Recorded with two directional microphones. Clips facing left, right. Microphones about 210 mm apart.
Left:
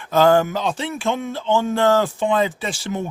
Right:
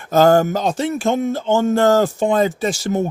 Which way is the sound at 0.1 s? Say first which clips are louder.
Right 2 dB; 45° right (ahead or behind).